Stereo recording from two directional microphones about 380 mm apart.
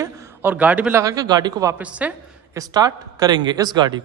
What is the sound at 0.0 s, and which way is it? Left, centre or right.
A man's voice, centre.